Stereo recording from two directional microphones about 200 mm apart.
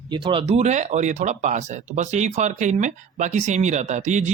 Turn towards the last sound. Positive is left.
turn(degrees=-35)  # may be behind; listen again after turning